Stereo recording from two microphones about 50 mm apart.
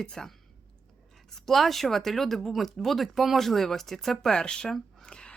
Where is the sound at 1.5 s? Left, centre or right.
Centre.